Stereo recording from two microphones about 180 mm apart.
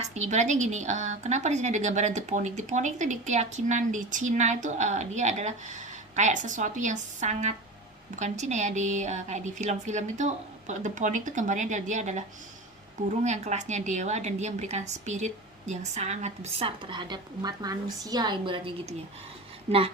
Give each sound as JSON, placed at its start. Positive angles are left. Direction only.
{"t": 0.0, "sound": "a woman's voice", "side_deg": -40}